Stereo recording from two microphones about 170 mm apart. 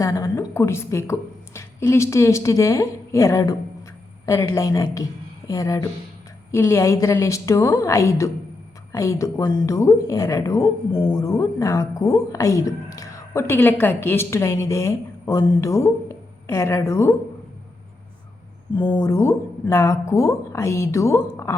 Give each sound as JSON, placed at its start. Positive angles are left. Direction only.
{"t": 0.0, "sound": "a woman's voice", "side_deg": 20}
{"t": 18.9, "sound": "a woman's voice", "side_deg": 15}